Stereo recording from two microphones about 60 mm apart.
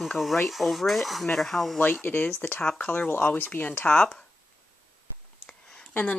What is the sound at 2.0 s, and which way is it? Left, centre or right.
Speech, left.